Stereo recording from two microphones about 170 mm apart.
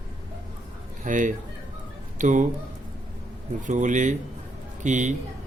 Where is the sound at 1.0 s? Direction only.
50° right (ahead or behind).